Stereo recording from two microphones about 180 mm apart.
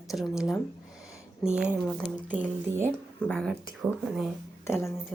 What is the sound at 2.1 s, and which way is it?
Speech, 10° right (ahead or behind).